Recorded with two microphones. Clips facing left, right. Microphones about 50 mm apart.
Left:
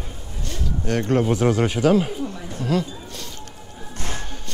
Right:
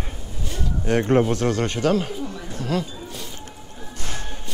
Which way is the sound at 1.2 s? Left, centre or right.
Centre.